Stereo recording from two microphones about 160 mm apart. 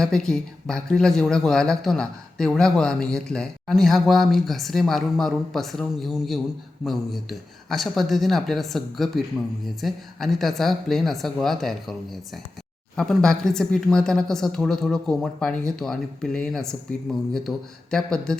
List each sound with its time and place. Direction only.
0.0 s speech: 5° left (ahead or behind)